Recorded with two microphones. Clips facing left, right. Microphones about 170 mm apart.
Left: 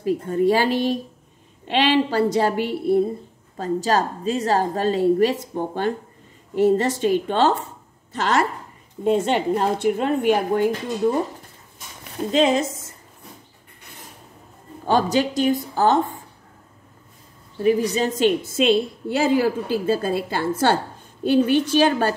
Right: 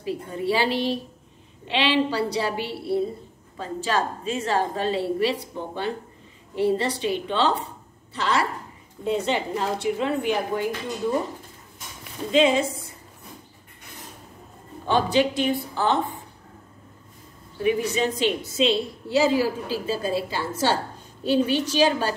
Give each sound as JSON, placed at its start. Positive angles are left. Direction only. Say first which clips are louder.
{"t": 0.0, "sound": "a woman's voice", "louder": "left 8 dB", "side_deg": 45}
{"t": 12.3, "sound": "a woman's voice", "louder": "left 1 dB", "side_deg": 45}
{"t": 14.9, "sound": "a woman's voice", "louder": "left 1 dB", "side_deg": 40}
{"t": 17.6, "sound": "a woman's voice", "louder": "left 3 dB", "side_deg": 35}